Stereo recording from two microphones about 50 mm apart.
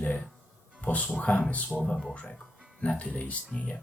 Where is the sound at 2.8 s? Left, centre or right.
Left.